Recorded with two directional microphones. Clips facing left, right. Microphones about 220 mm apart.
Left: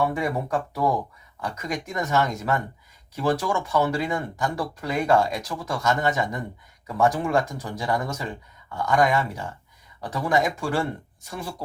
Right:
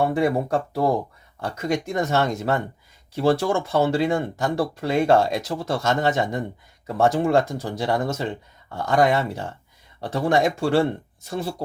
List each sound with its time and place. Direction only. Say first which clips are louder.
0.3 s speech: right 4 dB; 30° right (ahead or behind)